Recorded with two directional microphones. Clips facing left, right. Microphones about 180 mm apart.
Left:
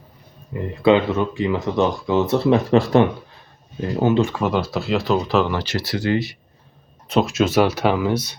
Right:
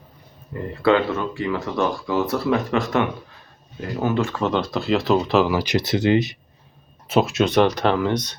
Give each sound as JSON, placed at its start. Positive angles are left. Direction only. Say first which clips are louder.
{"t": 0.8, "sound": "speech", "louder": "left 3 dB", "side_deg": 20}
{"t": 7.1, "sound": "speech", "louder": "even", "side_deg": 0}